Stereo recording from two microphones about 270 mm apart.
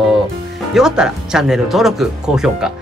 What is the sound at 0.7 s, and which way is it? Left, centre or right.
Speech, centre.